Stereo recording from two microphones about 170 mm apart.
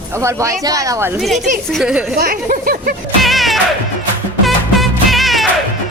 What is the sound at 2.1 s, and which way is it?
Speech, 55° right (ahead or behind).